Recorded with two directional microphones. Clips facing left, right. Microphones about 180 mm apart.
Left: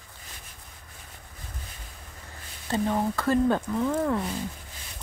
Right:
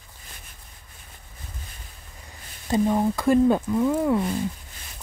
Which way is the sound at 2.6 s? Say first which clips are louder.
Right 5 dB; 15° right (ahead or behind).